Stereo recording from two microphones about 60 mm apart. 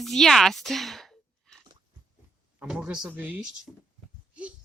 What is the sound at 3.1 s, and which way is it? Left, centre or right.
Speech, right.